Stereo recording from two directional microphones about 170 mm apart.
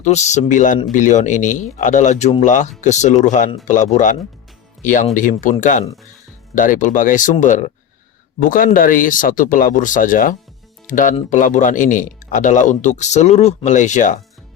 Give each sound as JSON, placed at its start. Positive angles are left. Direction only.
{"t": 0.0, "sound": "speech", "side_deg": 40}